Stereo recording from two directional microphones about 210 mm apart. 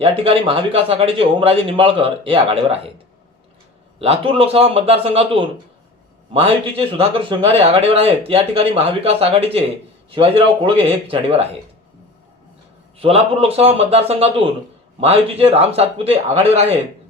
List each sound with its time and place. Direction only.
0.0 s a man's voice: 25° right (ahead or behind)
4.0 s a man's voice: 30° right (ahead or behind)
13.0 s a man's voice: 25° right (ahead or behind)